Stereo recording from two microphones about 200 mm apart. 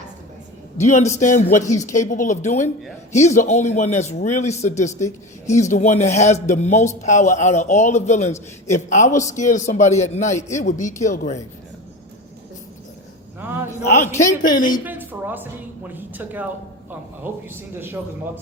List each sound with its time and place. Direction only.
0.8 s speech: 35° left (ahead or behind)
13.4 s a sound: 10° right (ahead or behind)
14.4 s speech: 40° left (ahead or behind)
14.8 s a woman's voice: 10° right (ahead or behind)